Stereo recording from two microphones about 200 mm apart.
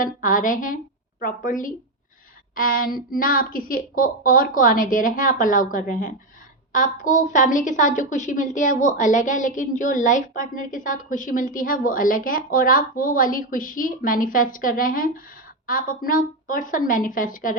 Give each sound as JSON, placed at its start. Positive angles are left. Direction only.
{"t": 0.0, "sound": "child singing", "side_deg": 40}
{"t": 1.2, "sound": "a woman's voice", "side_deg": 40}
{"t": 2.6, "sound": "child singing", "side_deg": 45}
{"t": 6.7, "sound": "a woman's voice", "side_deg": 40}
{"t": 15.6, "sound": "child singing", "side_deg": 45}